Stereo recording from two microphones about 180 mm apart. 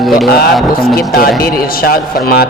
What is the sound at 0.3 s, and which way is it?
Speech, 60° left (ahead or behind).